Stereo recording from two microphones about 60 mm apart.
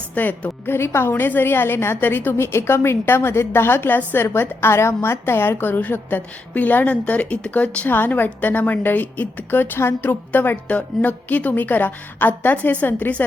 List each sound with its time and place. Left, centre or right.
0.1 s a woman's voice: left
7.9 s a woman's voice: left